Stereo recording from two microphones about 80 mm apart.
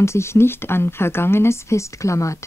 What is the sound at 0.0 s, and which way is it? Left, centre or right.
Speech, left.